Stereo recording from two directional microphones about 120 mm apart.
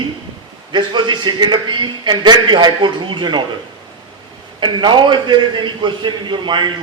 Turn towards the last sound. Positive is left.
turn(degrees=-40)  # may be behind; listen again after turning